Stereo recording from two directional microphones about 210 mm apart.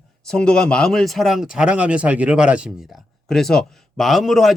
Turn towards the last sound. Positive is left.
turn(degrees=0)  # may be behind; listen again after turning